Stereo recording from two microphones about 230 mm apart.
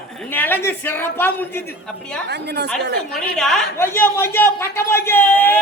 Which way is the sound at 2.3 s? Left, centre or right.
Right.